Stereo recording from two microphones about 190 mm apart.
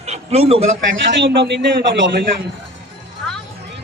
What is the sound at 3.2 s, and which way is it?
Music, 5° left (ahead or behind).